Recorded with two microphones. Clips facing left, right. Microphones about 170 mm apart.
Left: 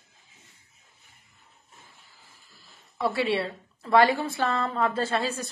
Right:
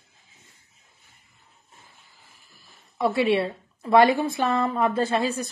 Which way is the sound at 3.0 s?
15° right (ahead or behind).